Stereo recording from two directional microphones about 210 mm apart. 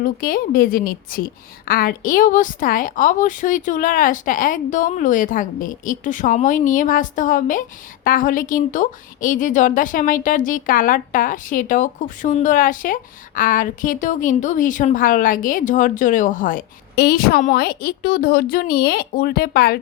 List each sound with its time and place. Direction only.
0.0 s a woman's voice: 40° left (ahead or behind)